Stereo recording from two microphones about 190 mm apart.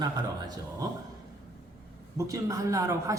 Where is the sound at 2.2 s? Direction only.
15° right (ahead or behind).